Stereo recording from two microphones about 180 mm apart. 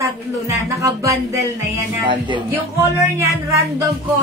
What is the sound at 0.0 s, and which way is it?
Speech, 15° right (ahead or behind).